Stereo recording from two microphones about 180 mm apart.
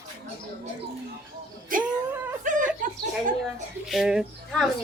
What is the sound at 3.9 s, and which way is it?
Speech, 5° right (ahead or behind).